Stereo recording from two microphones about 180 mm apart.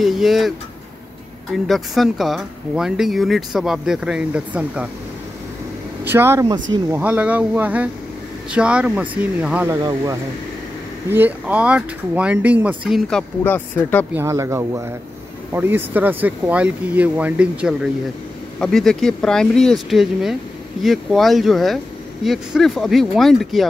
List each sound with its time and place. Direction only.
0.0 s speech: centre (ahead or behind)
1.7 s speech: centre (ahead or behind)
6.0 s speech: 15° right (ahead or behind)
9.8 s speech: 20° right (ahead or behind)
11.1 s speech: 10° right (ahead or behind)
13.4 s speech: 10° left (ahead or behind)
14.1 s speech: 15° right (ahead or behind); by 23.7 s centre (ahead or behind)